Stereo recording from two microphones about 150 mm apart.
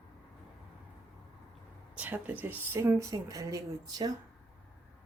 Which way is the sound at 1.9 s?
10° right (ahead or behind).